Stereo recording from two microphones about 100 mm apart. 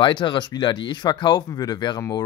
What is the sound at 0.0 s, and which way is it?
Speech, 50° left (ahead or behind).